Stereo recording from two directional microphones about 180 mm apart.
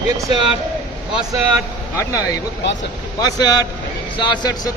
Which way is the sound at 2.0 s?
15° left (ahead or behind).